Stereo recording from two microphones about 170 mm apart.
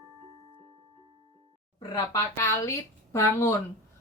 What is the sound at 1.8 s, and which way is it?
Speech, 20° left (ahead or behind).